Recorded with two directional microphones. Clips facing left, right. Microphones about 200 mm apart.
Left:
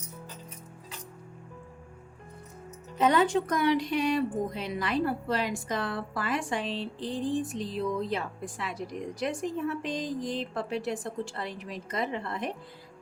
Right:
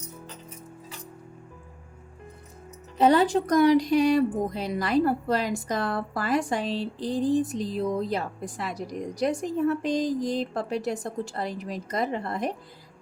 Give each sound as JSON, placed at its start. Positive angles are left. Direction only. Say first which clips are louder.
{"t": 3.0, "sound": "speech", "louder": "right 4 dB", "side_deg": -35}